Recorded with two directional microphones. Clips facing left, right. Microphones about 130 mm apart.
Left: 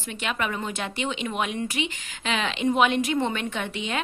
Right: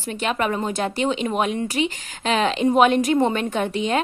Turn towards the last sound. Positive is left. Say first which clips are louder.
# right 8 dB
turn(degrees=-40)  # may be behind; listen again after turning